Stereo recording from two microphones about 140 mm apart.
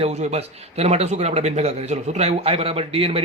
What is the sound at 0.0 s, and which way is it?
A man's voice, 50° right (ahead or behind).